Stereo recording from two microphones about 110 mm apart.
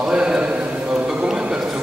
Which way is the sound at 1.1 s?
5° right (ahead or behind).